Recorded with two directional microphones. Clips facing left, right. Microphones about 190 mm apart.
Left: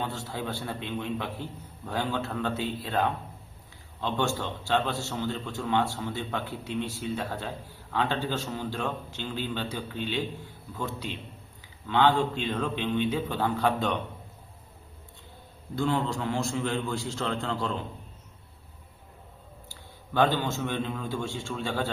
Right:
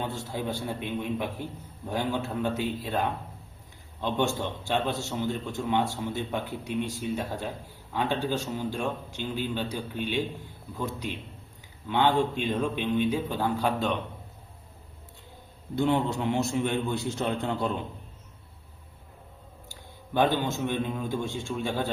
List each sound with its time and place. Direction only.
0.0 s a man's voice: 15° right (ahead or behind)
15.7 s a man's voice: 20° right (ahead or behind)
20.1 s a man's voice: 15° right (ahead or behind)